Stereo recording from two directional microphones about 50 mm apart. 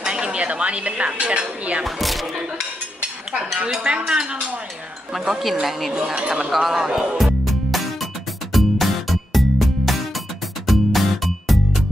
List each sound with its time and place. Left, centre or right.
0.0 s dishes: centre
1.9 s speech: centre
4.0 s speech: centre
5.2 s speech: centre
5.9 s speech: centre
6.5 s music: centre